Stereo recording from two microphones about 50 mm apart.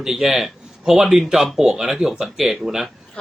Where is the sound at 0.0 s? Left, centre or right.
Centre.